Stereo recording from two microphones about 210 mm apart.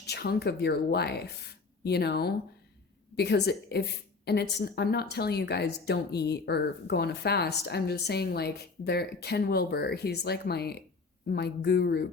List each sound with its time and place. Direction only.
0.0 s a woman's voice: 50° left (ahead or behind)